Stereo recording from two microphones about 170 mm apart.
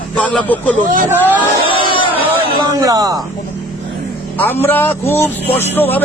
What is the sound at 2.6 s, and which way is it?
Speech, 20° right (ahead or behind).